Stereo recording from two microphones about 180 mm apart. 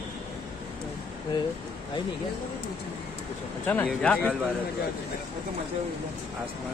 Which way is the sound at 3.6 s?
10° left (ahead or behind).